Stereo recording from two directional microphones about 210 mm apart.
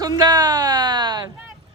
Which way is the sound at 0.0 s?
20° right (ahead or behind).